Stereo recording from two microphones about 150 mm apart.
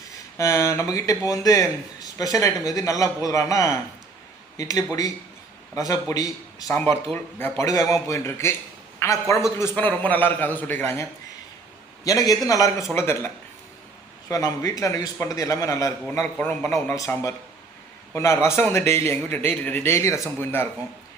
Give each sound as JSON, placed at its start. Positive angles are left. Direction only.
{"t": 0.3, "sound": "speech", "side_deg": 20}
{"t": 12.0, "sound": "a man's voice", "side_deg": 25}